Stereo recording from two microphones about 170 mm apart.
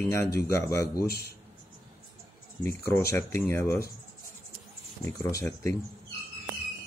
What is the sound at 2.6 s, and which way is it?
Speech, 15° left (ahead or behind).